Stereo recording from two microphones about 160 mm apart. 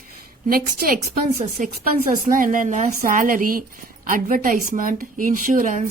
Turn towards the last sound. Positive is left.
turn(degrees=-55)  # may be behind; listen again after turning